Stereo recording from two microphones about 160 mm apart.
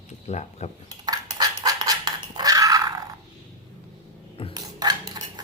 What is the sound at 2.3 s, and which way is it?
Dog, 25° right (ahead or behind).